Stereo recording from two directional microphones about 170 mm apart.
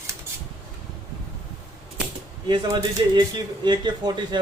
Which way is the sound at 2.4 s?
25° right (ahead or behind).